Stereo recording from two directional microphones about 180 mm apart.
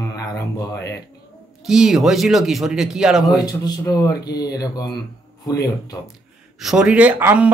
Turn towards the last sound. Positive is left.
turn(degrees=-10)  # may be behind; listen again after turning